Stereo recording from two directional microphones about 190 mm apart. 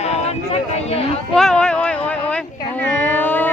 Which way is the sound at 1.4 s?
5° left (ahead or behind).